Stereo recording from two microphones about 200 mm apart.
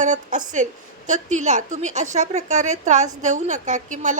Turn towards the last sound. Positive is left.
turn(degrees=-40)  # may be behind; listen again after turning